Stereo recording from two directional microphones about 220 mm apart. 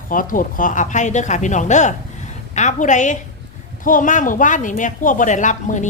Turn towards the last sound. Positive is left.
turn(degrees=35)  # may be behind; listen again after turning